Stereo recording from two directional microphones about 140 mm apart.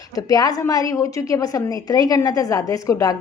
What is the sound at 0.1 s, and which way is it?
A woman's voice, 25° left (ahead or behind).